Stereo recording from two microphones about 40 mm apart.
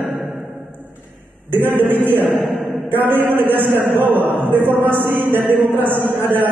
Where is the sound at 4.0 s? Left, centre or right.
Right.